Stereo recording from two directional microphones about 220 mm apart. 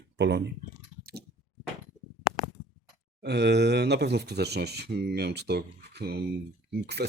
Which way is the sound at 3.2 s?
50° right (ahead or behind).